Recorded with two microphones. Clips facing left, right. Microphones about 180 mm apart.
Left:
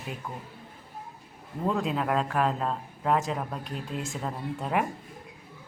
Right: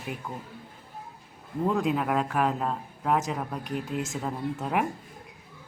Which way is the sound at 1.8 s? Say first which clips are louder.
Right 1 dB; 5° right (ahead or behind).